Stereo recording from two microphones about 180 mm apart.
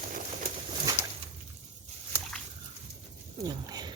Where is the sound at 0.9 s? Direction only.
20° right (ahead or behind).